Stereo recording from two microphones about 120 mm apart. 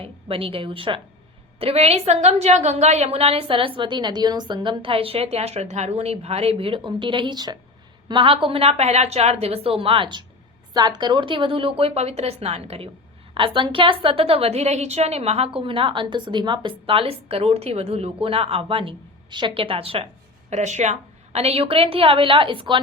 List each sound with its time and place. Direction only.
0.0 s a woman's voice: 50° right (ahead or behind)
13.3 s a woman's voice: 45° right (ahead or behind)
20.5 s a woman's voice: 75° right (ahead or behind); by 22.8 s 45° right (ahead or behind)